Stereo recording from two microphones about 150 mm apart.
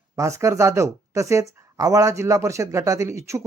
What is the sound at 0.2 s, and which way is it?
Speech, 20° right (ahead or behind).